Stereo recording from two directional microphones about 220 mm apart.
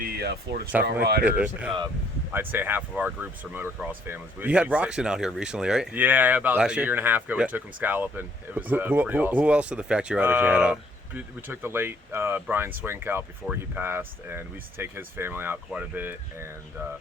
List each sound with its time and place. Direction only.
0.0 s speech: 45° right (ahead or behind)
1.2 s speech: 5° right (ahead or behind)